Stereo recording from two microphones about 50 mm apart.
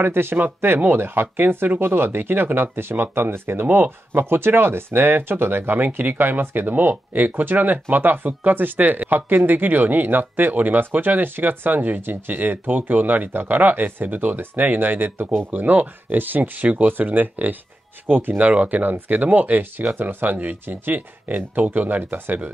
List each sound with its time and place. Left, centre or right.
0.0 s speech: right
18.4 s speech: right